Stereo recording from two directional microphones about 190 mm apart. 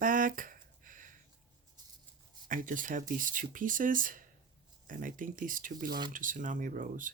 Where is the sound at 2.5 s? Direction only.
45° right (ahead or behind).